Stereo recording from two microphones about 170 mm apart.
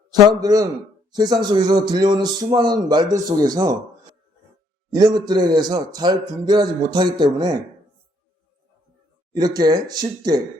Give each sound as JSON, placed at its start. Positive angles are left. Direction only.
{"t": 0.1, "sound": "a man's voice", "side_deg": -25}
{"t": 4.9, "sound": "a man's voice", "side_deg": -25}
{"t": 9.3, "sound": "a man's voice", "side_deg": -25}